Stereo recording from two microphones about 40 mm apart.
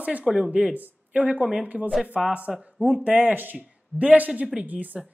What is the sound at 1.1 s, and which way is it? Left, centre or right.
Speech, right.